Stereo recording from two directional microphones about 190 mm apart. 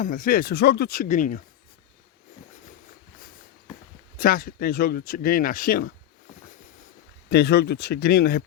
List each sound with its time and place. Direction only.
0.0 s speech: 50° left (ahead or behind)
4.2 s speech: 50° left (ahead or behind)
7.3 s speech: 60° left (ahead or behind)